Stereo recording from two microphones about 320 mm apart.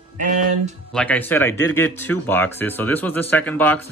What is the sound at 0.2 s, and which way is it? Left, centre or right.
Speech, right.